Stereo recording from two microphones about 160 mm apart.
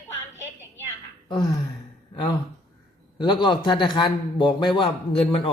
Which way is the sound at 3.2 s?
30° left (ahead or behind).